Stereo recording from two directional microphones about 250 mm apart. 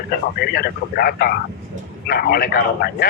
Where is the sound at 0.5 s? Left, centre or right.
Left.